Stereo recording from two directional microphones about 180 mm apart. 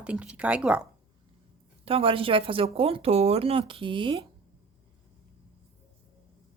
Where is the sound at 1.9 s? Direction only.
30° right (ahead or behind).